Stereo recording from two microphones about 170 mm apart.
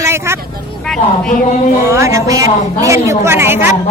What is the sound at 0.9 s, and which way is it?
Speech, 5° left (ahead or behind).